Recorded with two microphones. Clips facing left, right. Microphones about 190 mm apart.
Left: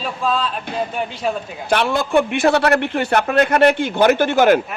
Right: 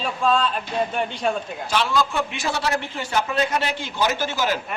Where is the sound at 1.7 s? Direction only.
60° left (ahead or behind).